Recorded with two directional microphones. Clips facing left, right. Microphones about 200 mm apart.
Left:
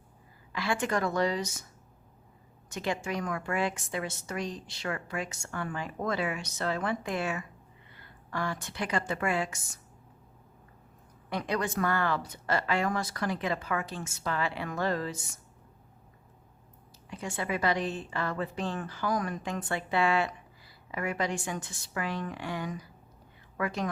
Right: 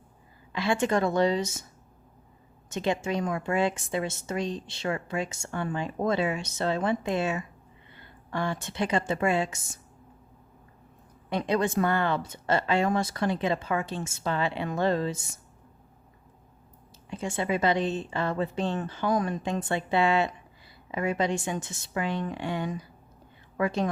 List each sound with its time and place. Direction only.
0.5 s a woman's voice: 25° right (ahead or behind)
2.6 s a woman's voice: 25° right (ahead or behind)
11.3 s a woman's voice: 25° right (ahead or behind)
17.1 s a woman's voice: 25° right (ahead or behind)